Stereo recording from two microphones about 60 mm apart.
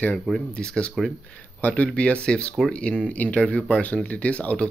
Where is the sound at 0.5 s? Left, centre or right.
Centre.